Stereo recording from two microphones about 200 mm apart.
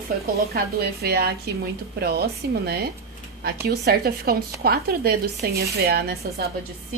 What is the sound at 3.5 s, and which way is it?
Speech, 55° right (ahead or behind).